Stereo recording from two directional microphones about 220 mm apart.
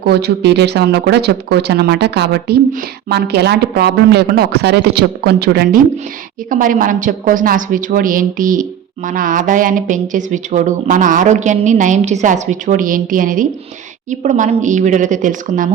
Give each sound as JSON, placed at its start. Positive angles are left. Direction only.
{"t": 0.0, "sound": "speech", "side_deg": -45}